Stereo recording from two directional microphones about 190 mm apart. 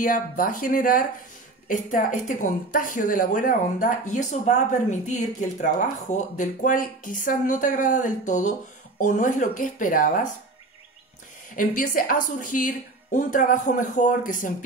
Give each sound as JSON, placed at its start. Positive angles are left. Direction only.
{"t": 0.0, "sound": "a woman's voice", "side_deg": 45}
{"t": 11.5, "sound": "a woman's voice", "side_deg": 45}